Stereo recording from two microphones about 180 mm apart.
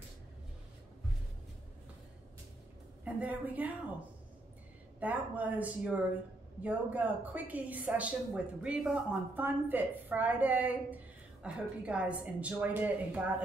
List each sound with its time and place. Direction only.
3.2 s a woman's voice: 10° right (ahead or behind)
5.0 s a woman's voice: 10° right (ahead or behind)